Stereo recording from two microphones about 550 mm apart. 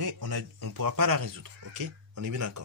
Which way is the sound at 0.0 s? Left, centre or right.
Right.